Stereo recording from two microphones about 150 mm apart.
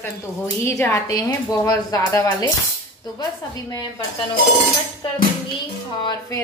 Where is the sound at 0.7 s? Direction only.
20° left (ahead or behind).